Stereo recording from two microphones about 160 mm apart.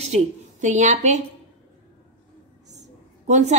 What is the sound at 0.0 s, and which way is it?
A woman's voice, 45° right (ahead or behind).